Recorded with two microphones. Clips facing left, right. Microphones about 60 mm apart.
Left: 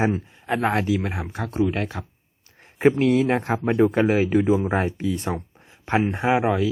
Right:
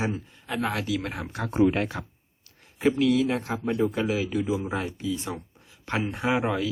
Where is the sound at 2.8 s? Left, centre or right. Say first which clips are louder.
Left 4 dB; left.